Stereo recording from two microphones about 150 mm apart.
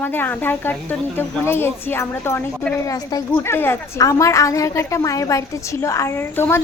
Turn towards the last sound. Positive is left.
turn(degrees=15)  # may be behind; listen again after turning